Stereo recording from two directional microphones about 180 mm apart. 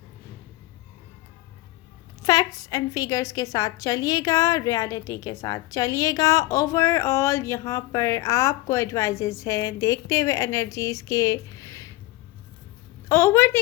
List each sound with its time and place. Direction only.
2.2 s a woman's voice: 20° left (ahead or behind)
13.1 s a woman's voice: 15° left (ahead or behind)